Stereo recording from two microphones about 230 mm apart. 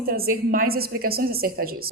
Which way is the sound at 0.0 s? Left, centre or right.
Right.